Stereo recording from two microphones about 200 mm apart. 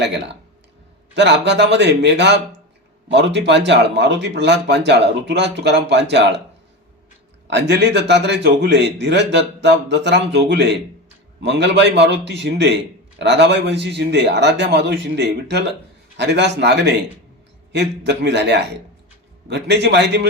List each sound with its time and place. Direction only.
0.0 s a man's voice: 60° right (ahead or behind)
7.5 s a man's voice: 60° right (ahead or behind)